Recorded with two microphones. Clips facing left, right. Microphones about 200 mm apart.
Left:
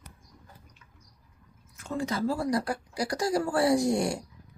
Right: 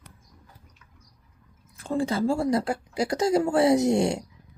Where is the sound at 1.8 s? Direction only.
30° right (ahead or behind).